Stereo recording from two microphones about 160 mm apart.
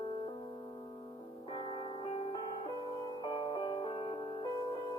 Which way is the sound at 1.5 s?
30° left (ahead or behind).